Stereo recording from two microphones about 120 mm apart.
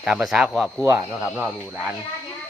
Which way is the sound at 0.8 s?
20° right (ahead or behind).